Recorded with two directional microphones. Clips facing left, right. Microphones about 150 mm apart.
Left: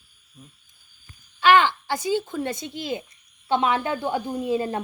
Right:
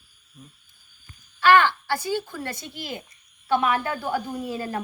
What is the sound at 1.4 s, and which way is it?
A woman's voice, 15° left (ahead or behind).